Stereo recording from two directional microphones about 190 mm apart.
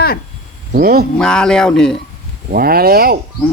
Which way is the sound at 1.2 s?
5° left (ahead or behind).